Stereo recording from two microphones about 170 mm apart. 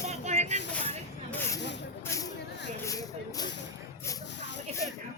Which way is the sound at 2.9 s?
20° left (ahead or behind).